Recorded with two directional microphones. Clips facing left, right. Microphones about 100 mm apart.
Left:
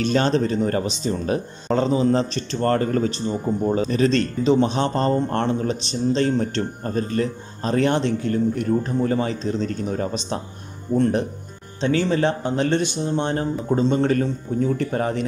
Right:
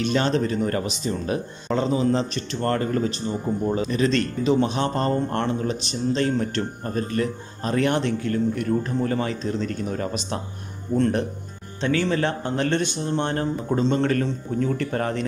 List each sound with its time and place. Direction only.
0.0 s speech: 40° left (ahead or behind); by 15.2 s 15° left (ahead or behind)